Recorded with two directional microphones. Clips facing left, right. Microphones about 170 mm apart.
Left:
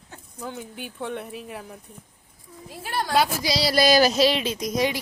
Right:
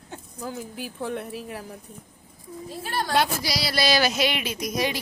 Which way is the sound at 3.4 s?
25° left (ahead or behind).